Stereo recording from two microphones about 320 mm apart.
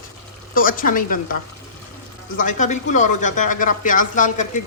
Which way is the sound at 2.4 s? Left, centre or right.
Left.